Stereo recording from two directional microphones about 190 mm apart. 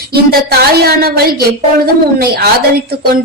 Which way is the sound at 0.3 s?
55° right (ahead or behind).